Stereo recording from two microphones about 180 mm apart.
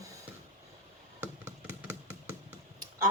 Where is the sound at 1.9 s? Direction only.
15° right (ahead or behind).